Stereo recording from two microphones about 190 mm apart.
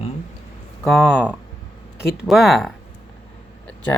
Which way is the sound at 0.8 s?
Centre (ahead or behind).